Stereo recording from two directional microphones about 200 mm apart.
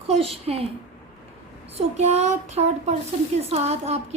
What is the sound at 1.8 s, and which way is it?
A woman's voice, 30° right (ahead or behind).